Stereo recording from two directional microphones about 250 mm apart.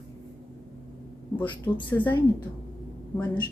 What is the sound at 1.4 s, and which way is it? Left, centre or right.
Speech, centre.